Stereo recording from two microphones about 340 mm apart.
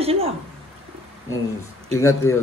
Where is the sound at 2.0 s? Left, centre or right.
Centre.